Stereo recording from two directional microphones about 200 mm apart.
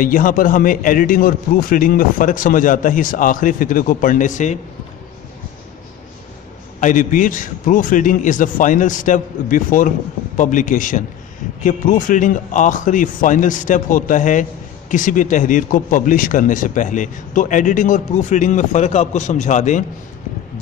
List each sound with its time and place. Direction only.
0.0 s a man's voice: 45° left (ahead or behind)
6.8 s speech: 40° left (ahead or behind)